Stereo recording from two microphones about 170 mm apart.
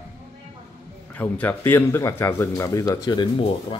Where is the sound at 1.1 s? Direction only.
10° left (ahead or behind).